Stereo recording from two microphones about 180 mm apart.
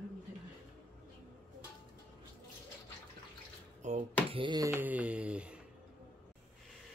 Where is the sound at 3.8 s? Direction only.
40° right (ahead or behind).